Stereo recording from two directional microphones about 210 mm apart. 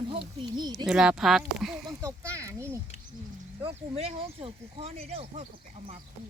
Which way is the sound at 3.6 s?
25° right (ahead or behind).